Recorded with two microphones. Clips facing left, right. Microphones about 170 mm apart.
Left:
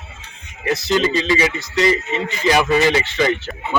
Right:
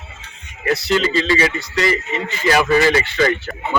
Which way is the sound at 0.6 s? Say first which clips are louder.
Even; 20° left (ahead or behind).